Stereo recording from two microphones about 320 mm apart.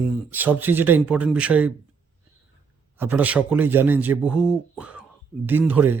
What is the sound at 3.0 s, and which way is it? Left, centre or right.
Speech, centre.